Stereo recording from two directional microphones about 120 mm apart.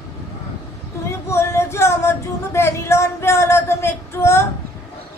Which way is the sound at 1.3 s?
20° left (ahead or behind).